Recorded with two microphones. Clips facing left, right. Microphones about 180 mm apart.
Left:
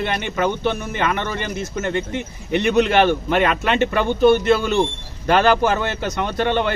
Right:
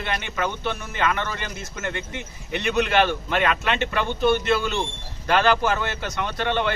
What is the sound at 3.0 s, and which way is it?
Speech, 30° left (ahead or behind).